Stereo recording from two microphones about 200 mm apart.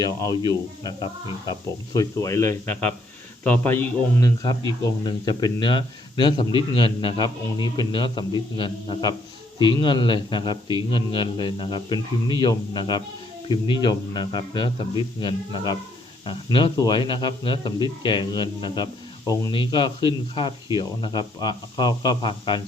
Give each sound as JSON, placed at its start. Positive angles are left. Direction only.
{"t": 0.0, "sound": "a man's voice", "side_deg": 20}